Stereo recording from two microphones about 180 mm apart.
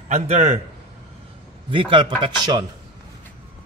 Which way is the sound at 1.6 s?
30° right (ahead or behind).